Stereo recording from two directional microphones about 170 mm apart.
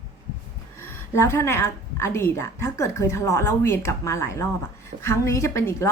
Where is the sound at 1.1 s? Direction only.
15° left (ahead or behind).